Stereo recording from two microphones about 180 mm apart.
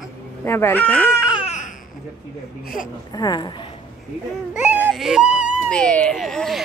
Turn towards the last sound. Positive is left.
turn(degrees=0)  # may be behind; listen again after turning